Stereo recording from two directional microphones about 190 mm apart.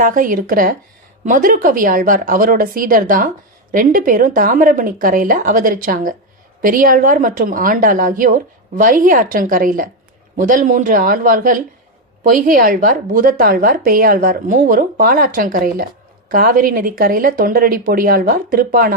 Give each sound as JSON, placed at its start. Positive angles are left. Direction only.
{"t": 0.0, "sound": "speech", "side_deg": -45}